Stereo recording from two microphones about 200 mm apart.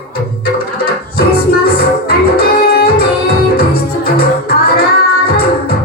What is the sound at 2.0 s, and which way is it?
Music, 50° left (ahead or behind).